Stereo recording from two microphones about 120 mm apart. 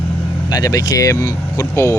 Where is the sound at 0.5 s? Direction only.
30° left (ahead or behind).